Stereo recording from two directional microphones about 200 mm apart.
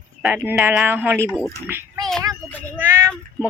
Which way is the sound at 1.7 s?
15° right (ahead or behind).